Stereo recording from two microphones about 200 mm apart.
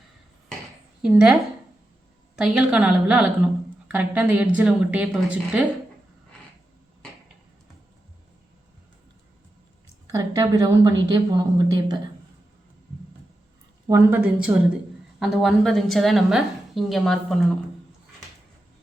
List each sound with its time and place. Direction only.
1.0 s a woman's voice: 5° right (ahead or behind)
10.1 s a woman's voice: 15° right (ahead or behind)
13.8 s a woman's voice: 20° right (ahead or behind)
15.2 s a woman's voice: centre (ahead or behind)